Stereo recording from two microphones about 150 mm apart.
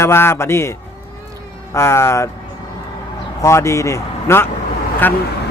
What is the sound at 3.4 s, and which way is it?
Speech, 20° left (ahead or behind).